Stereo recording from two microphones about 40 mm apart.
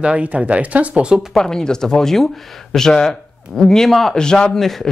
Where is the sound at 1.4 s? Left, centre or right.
Centre.